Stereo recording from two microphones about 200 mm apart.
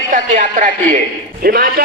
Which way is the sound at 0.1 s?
40° right (ahead or behind).